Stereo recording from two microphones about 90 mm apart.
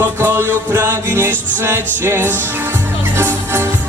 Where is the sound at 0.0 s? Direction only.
25° right (ahead or behind).